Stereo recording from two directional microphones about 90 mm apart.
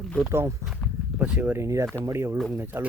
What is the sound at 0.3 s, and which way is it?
Speech, 30° right (ahead or behind).